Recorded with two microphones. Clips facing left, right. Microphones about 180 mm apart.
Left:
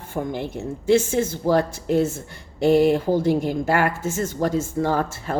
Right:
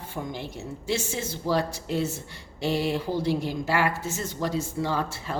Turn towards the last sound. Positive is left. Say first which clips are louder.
# left 6 dB
turn(degrees=50)  # may be behind; listen again after turning